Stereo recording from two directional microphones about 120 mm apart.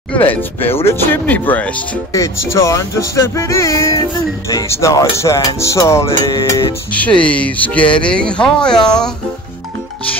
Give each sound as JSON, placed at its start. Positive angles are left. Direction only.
{"t": 0.1, "sound": "speech", "side_deg": 15}
{"t": 2.1, "sound": "speech", "side_deg": 25}
{"t": 6.9, "sound": "speech", "side_deg": 10}